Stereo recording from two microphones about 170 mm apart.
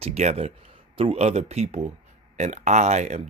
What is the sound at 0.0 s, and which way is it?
Speech, 40° right (ahead or behind).